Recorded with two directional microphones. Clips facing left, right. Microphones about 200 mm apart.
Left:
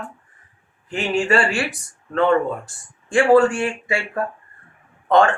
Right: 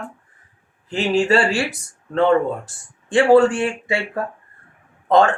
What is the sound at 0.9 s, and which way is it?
Speech, 30° right (ahead or behind).